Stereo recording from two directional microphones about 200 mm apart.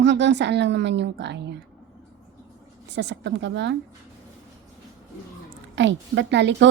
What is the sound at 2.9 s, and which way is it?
Speech, 60° right (ahead or behind).